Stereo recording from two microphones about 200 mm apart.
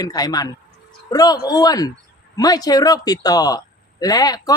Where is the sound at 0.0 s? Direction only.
20° left (ahead or behind).